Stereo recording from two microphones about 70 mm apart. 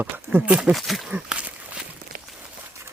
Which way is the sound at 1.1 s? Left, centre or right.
Centre.